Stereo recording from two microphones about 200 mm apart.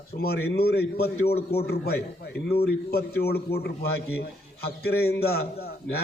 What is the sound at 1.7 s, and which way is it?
A man's voice, 55° left (ahead or behind).